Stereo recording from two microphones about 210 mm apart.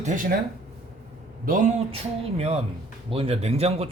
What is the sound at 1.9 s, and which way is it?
A man's voice, 30° right (ahead or behind).